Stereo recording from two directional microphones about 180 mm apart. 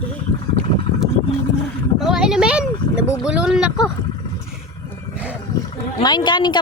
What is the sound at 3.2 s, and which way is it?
Speech, 5° right (ahead or behind).